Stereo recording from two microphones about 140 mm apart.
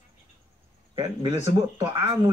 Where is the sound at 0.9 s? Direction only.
30° right (ahead or behind).